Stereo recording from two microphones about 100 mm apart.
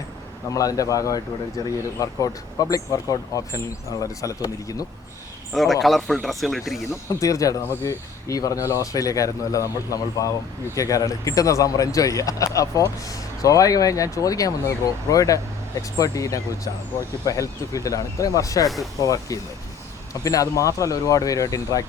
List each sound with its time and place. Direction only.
0.5 s speech: 35° left (ahead or behind)
5.8 s speech: centre (ahead or behind)
6.9 s speech: 30° left (ahead or behind)